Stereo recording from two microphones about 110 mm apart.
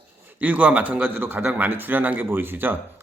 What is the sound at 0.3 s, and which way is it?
A man's voice, 15° right (ahead or behind).